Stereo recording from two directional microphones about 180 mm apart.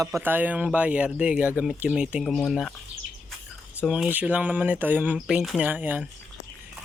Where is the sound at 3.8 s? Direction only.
5° right (ahead or behind).